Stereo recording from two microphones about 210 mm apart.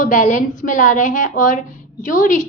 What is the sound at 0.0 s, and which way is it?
A woman's voice, 40° left (ahead or behind).